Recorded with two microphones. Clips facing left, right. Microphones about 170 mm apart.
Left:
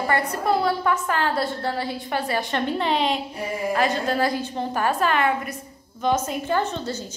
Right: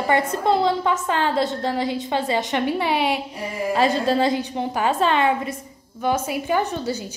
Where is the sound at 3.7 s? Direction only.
30° right (ahead or behind).